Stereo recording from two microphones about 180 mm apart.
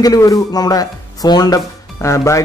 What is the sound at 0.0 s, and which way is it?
Speech, 20° left (ahead or behind).